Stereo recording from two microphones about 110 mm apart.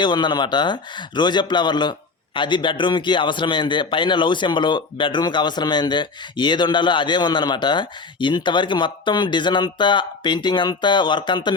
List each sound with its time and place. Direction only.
0.0 s a man's voice: 45° left (ahead or behind)